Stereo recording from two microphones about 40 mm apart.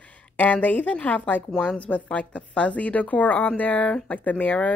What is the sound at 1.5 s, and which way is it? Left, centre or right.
Speech, left.